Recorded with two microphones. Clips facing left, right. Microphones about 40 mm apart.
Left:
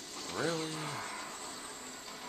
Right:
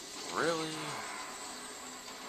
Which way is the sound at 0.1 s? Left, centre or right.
Centre.